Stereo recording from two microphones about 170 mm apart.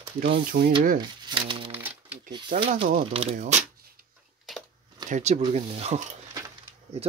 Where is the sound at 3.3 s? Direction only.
50° right (ahead or behind).